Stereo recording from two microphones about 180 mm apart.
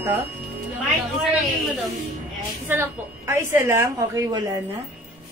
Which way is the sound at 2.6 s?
10° right (ahead or behind).